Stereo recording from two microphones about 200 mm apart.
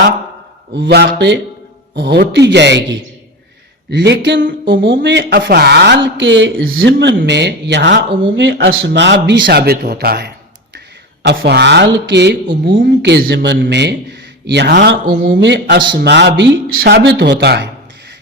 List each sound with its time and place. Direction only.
0.7 s a man's voice: 55° right (ahead or behind)
5.0 s a man's voice: 55° right (ahead or behind)